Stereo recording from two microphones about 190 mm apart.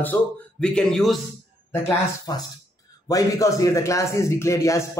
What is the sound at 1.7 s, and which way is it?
Speech, 15° left (ahead or behind).